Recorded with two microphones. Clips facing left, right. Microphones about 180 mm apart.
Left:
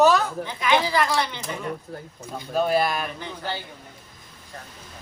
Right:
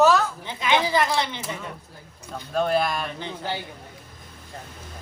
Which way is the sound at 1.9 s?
60° left (ahead or behind).